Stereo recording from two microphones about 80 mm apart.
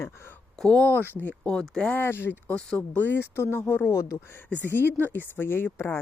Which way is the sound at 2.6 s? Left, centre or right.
Centre.